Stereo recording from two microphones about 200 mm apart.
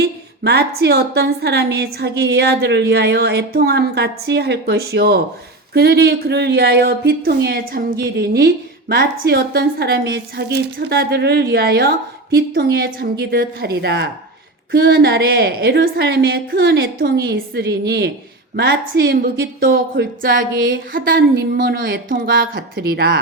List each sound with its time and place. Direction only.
0.0 s a woman's voice: 55° right (ahead or behind)